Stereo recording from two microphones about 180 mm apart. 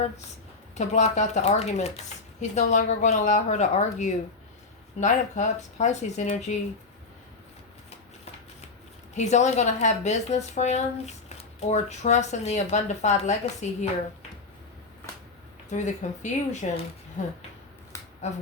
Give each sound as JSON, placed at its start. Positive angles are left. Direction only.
{"t": 0.8, "sound": "a woman's voice", "side_deg": 40}
{"t": 9.1, "sound": "a woman's voice", "side_deg": 40}
{"t": 15.7, "sound": "a woman's voice", "side_deg": 40}
{"t": 17.9, "sound": "a sound", "side_deg": 15}